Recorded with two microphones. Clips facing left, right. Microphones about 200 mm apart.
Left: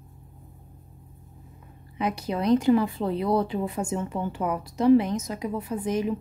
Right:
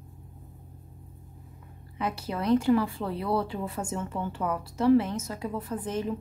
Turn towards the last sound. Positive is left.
turn(degrees=10)  # may be behind; listen again after turning